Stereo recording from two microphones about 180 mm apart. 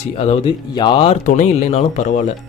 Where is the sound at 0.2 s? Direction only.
30° left (ahead or behind).